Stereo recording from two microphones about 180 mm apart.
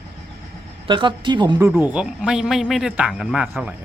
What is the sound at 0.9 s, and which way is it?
Speech, 25° right (ahead or behind).